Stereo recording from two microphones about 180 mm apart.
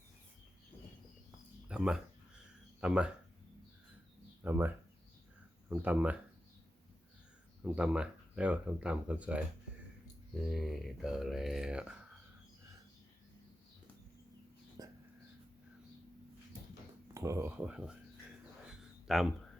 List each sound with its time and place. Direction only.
1.6 s a sound: 5° right (ahead or behind)
2.8 s speech: 5° right (ahead or behind)
4.4 s speech: 10° right (ahead or behind)
7.6 s speech: 5° right (ahead or behind)
10.5 s speech: centre (ahead or behind)
14.8 s whispering: 20° right (ahead or behind)
17.2 s speech: 15° right (ahead or behind)
18.7 s a sound: centre (ahead or behind)